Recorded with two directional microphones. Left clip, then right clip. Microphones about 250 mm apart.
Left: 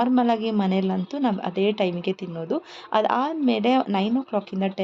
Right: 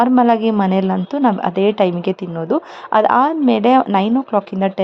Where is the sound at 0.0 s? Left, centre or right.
Centre.